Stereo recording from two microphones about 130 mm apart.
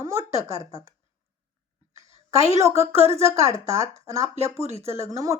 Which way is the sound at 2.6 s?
20° right (ahead or behind).